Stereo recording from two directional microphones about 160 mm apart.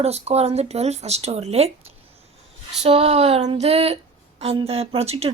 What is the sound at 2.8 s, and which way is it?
Speech, 40° right (ahead or behind).